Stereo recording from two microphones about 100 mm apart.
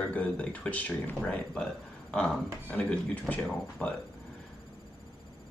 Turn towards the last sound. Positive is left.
turn(degrees=15)  # may be behind; listen again after turning